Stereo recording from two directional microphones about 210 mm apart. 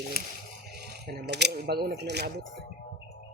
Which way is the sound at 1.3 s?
55° right (ahead or behind).